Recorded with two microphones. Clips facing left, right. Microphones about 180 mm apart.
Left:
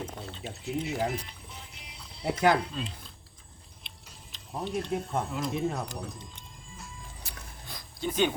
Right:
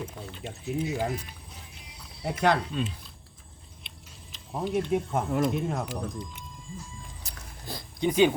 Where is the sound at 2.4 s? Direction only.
Centre (ahead or behind).